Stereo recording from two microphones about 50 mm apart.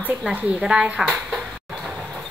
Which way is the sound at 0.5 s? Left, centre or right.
Centre.